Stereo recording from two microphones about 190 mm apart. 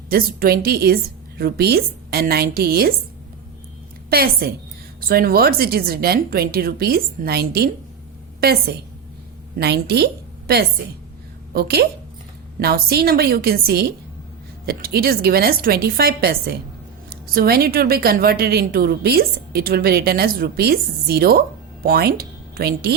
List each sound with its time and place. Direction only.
0.1 s a woman's voice: 50° right (ahead or behind)
4.1 s a woman's voice: 55° right (ahead or behind)